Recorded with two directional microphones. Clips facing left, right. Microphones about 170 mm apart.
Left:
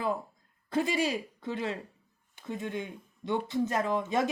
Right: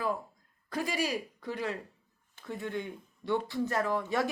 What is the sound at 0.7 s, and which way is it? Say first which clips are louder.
Speech: left 4 dB; 25° left (ahead or behind).